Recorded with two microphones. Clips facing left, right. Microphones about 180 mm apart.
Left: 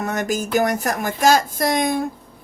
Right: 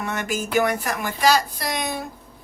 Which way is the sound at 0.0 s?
40° left (ahead or behind).